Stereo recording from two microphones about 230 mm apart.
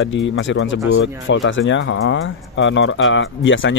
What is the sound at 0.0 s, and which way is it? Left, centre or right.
Speech, left.